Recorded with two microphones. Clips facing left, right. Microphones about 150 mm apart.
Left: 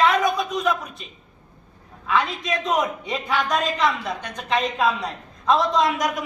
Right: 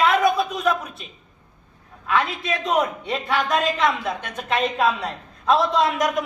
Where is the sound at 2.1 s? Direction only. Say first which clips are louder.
Even; centre (ahead or behind).